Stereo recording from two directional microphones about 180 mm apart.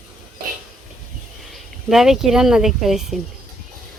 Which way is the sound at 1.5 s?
Centre (ahead or behind).